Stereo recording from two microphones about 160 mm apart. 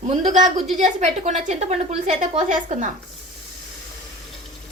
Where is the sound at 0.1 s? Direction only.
45° right (ahead or behind).